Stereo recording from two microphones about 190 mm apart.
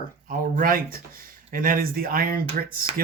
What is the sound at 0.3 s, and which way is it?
Speech, 45° right (ahead or behind).